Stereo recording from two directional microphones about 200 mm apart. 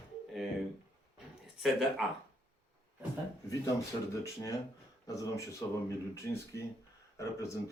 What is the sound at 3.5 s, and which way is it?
Speech, 15° left (ahead or behind).